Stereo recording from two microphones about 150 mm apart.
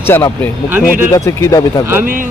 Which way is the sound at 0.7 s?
15° right (ahead or behind).